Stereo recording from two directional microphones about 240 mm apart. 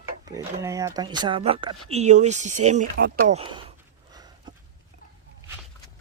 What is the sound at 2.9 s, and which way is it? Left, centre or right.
Speech, right.